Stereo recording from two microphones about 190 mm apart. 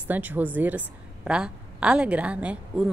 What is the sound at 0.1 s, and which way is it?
A woman's voice, 10° right (ahead or behind).